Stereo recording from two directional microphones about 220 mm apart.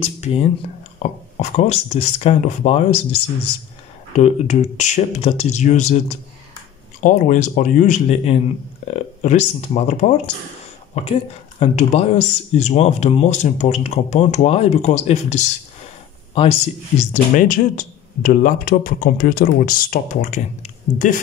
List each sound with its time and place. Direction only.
0.0 s speech: 30° left (ahead or behind)
4.1 s speech: 35° left (ahead or behind)
17.1 s speech: 35° left (ahead or behind)